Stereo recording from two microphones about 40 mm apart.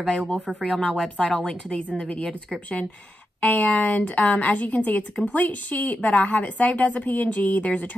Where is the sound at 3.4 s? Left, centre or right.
Left.